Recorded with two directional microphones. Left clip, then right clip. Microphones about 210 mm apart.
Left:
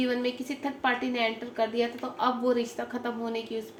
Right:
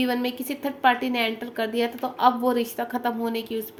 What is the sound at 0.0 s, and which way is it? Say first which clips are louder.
A woman's voice: right 3 dB; 55° right (ahead or behind).